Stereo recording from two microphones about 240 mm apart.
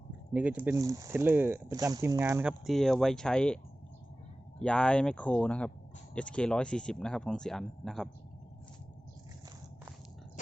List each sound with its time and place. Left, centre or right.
0.3 s speech: centre
4.6 s speech: centre